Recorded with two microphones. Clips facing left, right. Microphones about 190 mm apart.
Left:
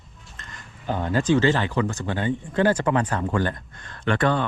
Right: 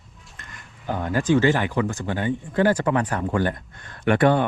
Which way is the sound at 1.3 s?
20° right (ahead or behind).